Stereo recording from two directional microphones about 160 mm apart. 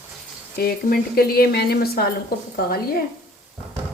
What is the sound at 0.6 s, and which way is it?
Speech, 70° left (ahead or behind).